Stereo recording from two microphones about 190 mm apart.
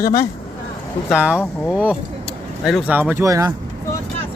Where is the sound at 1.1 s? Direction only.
5° right (ahead or behind).